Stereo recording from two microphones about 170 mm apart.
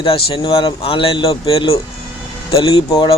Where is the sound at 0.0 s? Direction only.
30° left (ahead or behind).